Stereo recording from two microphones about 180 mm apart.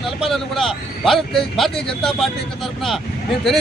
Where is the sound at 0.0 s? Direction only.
Centre (ahead or behind).